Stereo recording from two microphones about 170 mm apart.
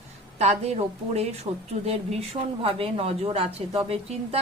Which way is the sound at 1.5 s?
30° right (ahead or behind).